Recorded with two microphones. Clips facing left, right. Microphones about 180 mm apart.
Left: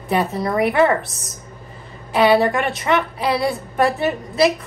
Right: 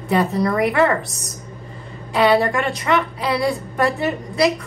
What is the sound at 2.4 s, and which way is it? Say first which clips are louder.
Speech: left 2 dB; 20° left (ahead or behind).